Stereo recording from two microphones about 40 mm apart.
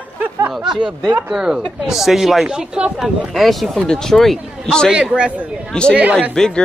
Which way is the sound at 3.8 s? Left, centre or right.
Centre.